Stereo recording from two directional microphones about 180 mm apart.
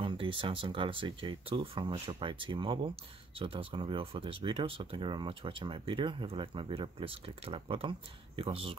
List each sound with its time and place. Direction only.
0.0 s speech: 30° right (ahead or behind)